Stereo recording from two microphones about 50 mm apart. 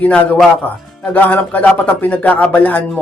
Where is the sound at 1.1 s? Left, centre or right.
Left.